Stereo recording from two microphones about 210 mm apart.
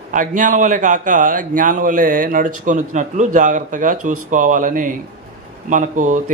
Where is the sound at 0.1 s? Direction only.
40° right (ahead or behind).